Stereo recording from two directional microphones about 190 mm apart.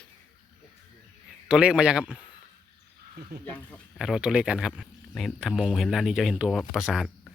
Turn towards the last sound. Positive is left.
turn(degrees=-5)  # may be behind; listen again after turning